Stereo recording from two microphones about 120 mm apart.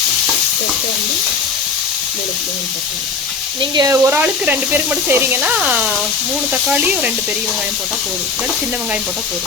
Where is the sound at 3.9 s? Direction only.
20° right (ahead or behind).